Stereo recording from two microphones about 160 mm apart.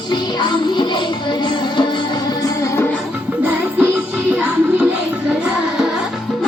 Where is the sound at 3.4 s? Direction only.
10° right (ahead or behind).